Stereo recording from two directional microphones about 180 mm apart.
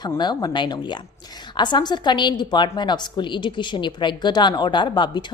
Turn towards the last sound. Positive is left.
turn(degrees=25)  # may be behind; listen again after turning